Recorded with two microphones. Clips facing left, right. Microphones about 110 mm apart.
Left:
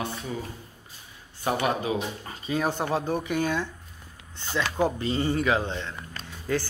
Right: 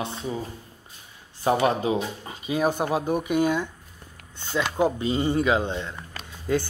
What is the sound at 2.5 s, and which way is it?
Speech, 15° right (ahead or behind).